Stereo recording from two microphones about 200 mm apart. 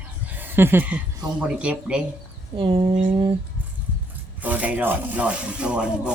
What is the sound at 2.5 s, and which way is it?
Speech, 25° right (ahead or behind).